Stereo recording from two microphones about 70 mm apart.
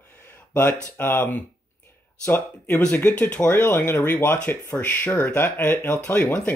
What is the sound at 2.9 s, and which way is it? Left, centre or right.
Speech, left.